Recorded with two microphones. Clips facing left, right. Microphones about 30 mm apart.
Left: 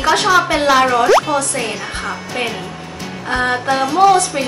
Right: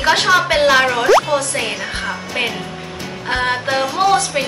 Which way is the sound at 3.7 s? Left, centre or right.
Centre.